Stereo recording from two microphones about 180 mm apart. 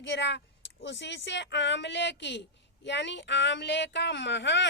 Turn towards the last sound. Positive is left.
turn(degrees=75)  # may be behind; listen again after turning